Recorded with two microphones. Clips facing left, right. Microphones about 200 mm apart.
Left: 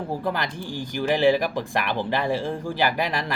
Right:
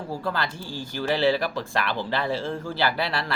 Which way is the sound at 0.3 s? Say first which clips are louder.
Left 2 dB; 15° left (ahead or behind).